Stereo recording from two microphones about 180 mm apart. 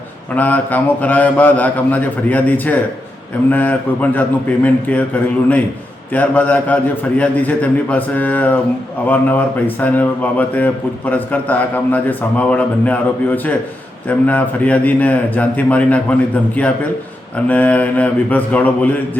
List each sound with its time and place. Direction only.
0.3 s a man's voice: 10° left (ahead or behind)